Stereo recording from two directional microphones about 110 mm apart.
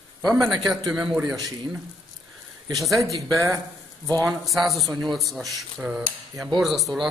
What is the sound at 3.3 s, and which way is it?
Speech, 25° right (ahead or behind).